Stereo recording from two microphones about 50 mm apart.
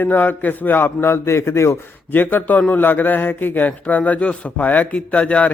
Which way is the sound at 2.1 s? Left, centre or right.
Left.